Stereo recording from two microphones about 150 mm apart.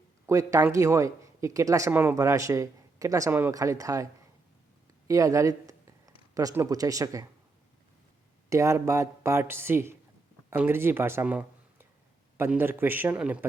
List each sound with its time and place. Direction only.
0.3 s speech: 20° right (ahead or behind)
5.0 s a sound: 20° right (ahead or behind)
6.3 s speech: 20° right (ahead or behind)
8.4 s speech: 20° right (ahead or behind)